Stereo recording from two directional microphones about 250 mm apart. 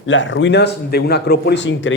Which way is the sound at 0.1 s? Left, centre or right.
Left.